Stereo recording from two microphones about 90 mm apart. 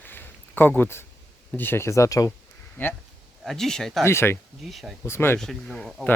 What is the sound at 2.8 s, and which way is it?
Speech, 20° left (ahead or behind).